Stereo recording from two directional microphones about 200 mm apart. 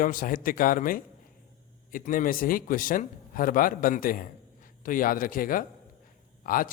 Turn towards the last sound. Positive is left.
turn(degrees=45)  # may be behind; listen again after turning